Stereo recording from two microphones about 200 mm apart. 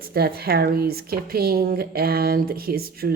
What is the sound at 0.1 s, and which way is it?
Speech, 50° right (ahead or behind).